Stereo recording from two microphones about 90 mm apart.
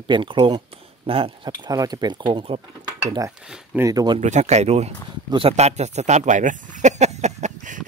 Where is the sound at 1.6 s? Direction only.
45° right (ahead or behind); by 2.6 s 65° right (ahead or behind).